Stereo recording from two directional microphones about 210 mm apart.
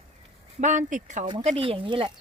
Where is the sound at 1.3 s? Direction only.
25° right (ahead or behind).